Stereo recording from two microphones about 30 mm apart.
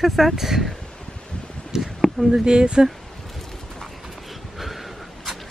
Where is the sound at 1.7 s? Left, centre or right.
Centre.